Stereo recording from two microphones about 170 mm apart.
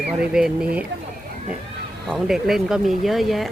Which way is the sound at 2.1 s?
Centre (ahead or behind).